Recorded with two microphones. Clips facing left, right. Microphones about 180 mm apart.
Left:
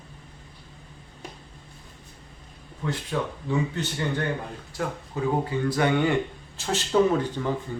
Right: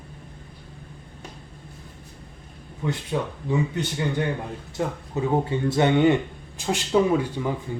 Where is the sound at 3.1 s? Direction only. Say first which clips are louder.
Right 1 dB; 20° right (ahead or behind).